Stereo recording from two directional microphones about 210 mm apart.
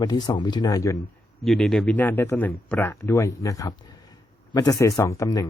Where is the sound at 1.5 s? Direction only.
Centre (ahead or behind).